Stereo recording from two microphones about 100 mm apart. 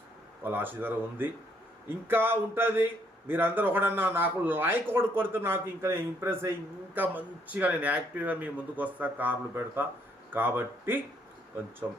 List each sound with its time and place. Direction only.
0.4 s a man's voice: 20° right (ahead or behind)